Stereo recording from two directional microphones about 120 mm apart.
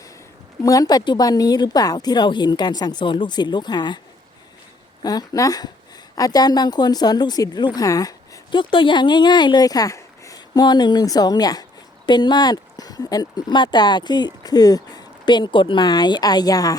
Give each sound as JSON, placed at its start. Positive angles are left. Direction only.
{"t": 0.6, "sound": "speech", "side_deg": 30}
{"t": 5.0, "sound": "speech", "side_deg": 30}
{"t": 8.5, "sound": "speech", "side_deg": 40}